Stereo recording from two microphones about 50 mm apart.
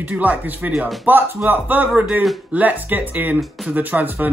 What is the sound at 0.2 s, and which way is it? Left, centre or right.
Speech, right.